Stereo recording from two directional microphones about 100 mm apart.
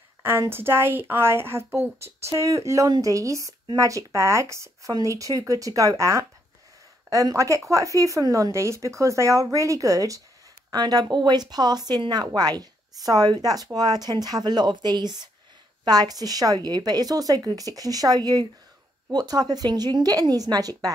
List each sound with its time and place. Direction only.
0.2 s speech: 25° right (ahead or behind); by 20.9 s 40° right (ahead or behind)